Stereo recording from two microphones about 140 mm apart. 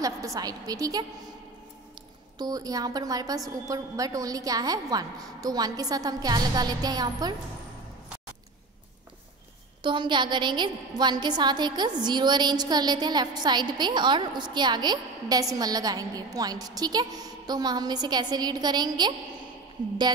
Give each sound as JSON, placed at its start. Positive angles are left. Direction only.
{"t": 0.0, "sound": "a woman's voice", "side_deg": -25}
{"t": 2.3, "sound": "a woman's voice", "side_deg": -30}
{"t": 9.8, "sound": "a woman's voice", "side_deg": -35}